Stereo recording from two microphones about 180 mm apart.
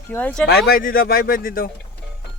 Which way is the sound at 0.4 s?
60° left (ahead or behind).